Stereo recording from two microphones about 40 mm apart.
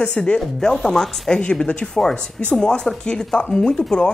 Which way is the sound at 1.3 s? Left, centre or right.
Left.